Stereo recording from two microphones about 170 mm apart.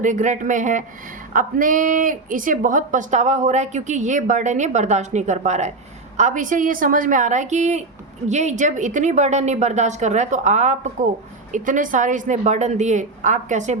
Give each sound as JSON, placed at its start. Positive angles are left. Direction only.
{"t": 0.0, "sound": "speech", "side_deg": -45}